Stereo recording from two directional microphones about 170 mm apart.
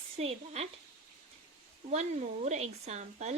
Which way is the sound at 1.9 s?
40° right (ahead or behind).